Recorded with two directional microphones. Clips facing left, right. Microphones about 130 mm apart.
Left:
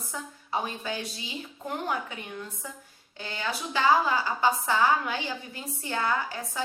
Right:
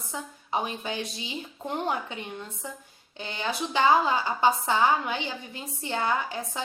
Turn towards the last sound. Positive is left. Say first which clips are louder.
# right 1 dB
turn(degrees=-20)  # may be behind; listen again after turning